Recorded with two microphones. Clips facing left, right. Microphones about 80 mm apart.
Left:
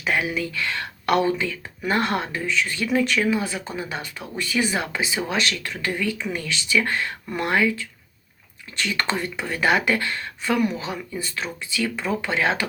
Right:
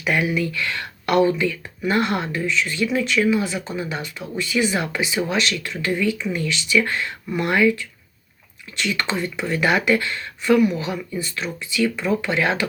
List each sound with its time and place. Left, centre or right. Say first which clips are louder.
0.0 s speech: right 3 dB; left
1.8 s speech: right 2 dB; left
2.8 s speech: left 1 dB; left
3.2 s speech: right 3 dB; left
4.4 s speech: right 2 dB; left
5.6 s speech: right 4 dB; left
8.7 s speech: right 1 dB; left
9.5 s speech: right 2 dB; left